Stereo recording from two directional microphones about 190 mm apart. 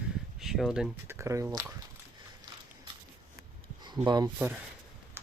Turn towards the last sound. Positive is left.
turn(degrees=-5)  # may be behind; listen again after turning